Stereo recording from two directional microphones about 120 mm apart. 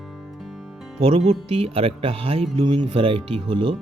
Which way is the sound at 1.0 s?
50° right (ahead or behind).